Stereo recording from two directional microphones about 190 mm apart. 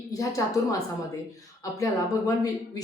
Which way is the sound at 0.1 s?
15° left (ahead or behind).